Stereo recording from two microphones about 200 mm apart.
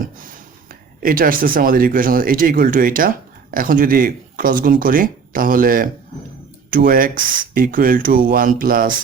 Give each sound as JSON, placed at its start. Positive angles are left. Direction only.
{"t": 1.0, "sound": "speech", "side_deg": -45}